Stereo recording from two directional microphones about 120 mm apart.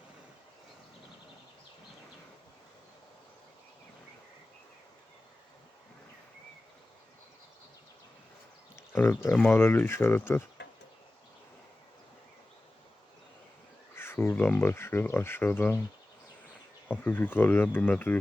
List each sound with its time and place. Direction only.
8.7 s speech: 20° left (ahead or behind)
13.9 s speech: 20° left (ahead or behind)
16.9 s speech: 15° left (ahead or behind)